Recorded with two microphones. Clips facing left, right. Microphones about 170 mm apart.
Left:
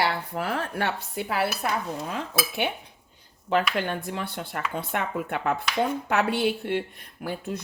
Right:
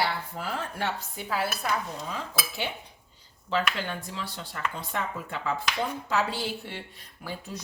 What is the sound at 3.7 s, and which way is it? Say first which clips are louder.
Speech: left 6 dB; 55° left (ahead or behind).